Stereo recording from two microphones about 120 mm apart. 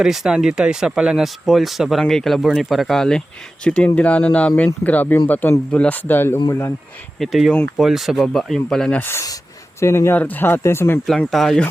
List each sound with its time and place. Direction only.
0.0 s a man's voice: 5° right (ahead or behind); by 6.7 s 20° left (ahead or behind)
7.2 s speech: centre (ahead or behind)
9.0 s speech: 20° left (ahead or behind)
11.0 s speech: 5° left (ahead or behind)